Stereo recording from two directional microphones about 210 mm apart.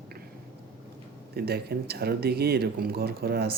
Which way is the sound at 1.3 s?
50° right (ahead or behind).